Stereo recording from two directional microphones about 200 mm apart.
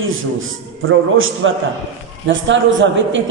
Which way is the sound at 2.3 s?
70° right (ahead or behind).